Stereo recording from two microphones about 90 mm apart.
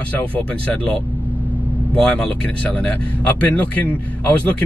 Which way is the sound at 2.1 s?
15° left (ahead or behind).